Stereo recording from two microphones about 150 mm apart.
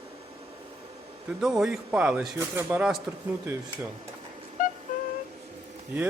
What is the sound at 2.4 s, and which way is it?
Speech, 20° right (ahead or behind).